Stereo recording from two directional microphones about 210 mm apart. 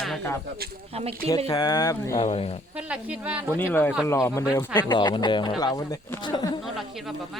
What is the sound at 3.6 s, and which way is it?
Speech, 10° left (ahead or behind).